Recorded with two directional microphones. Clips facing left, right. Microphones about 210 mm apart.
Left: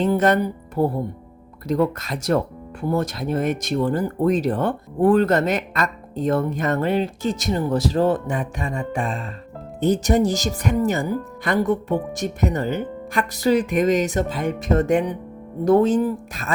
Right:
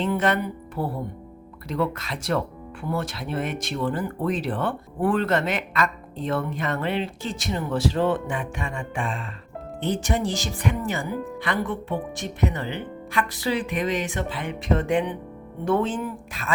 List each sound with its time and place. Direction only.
0.0 s speech: 40° left (ahead or behind)